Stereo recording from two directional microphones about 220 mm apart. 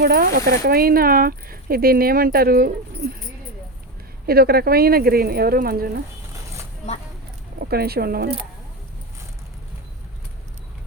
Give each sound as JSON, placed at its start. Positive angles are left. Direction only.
{"t": 0.0, "sound": "speech", "side_deg": -45}
{"t": 4.3, "sound": "speech", "side_deg": -45}
{"t": 7.6, "sound": "speech", "side_deg": -45}